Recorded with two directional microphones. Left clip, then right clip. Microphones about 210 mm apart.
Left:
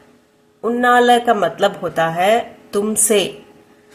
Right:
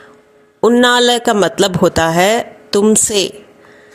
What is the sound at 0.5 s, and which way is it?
Speech, 40° right (ahead or behind).